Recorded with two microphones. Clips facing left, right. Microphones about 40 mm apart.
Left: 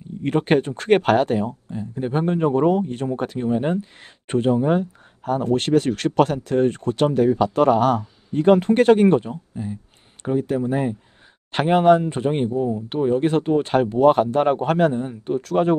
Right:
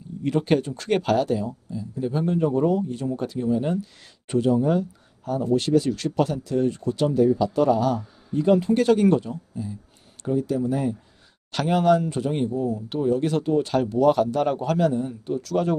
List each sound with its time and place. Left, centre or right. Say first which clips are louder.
0.2 s speech: left 3 dB; left